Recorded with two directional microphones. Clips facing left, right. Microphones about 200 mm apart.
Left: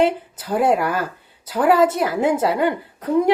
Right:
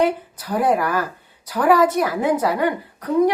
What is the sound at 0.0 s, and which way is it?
Speech, 25° left (ahead or behind).